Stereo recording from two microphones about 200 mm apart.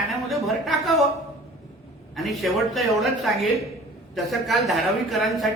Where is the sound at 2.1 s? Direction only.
Centre (ahead or behind).